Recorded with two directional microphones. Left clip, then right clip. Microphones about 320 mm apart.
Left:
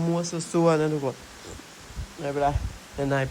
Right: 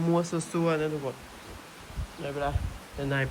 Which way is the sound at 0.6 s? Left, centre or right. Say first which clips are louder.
Left 6 dB; centre.